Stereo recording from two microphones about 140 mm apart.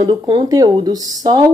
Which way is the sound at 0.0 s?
25° right (ahead or behind).